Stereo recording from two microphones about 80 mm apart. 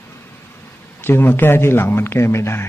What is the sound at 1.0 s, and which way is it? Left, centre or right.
Speech, left.